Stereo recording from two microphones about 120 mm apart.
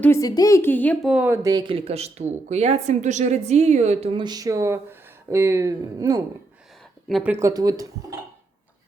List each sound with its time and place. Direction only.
0.2 s a woman's voice: 30° left (ahead or behind); by 0.9 s 15° left (ahead or behind)
1.4 s speech: 30° right (ahead or behind)
1.6 s a woman's voice: 55° right (ahead or behind); by 4.1 s 70° right (ahead or behind)
4.1 s speech: 35° right (ahead or behind)
7.1 s speech: 10° right (ahead or behind)
7.3 s speech: 30° right (ahead or behind)